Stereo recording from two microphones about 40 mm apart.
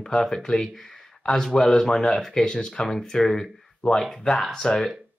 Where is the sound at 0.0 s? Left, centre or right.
Centre.